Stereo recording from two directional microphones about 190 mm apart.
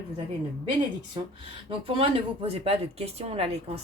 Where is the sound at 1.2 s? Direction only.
25° right (ahead or behind).